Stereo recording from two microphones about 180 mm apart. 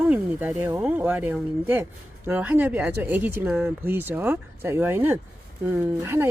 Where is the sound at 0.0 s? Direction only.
10° right (ahead or behind).